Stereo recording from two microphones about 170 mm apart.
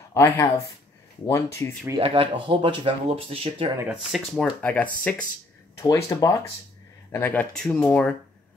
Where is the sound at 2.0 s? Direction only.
30° right (ahead or behind).